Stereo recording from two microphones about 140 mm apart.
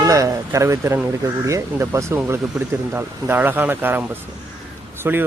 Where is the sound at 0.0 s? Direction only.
20° right (ahead or behind).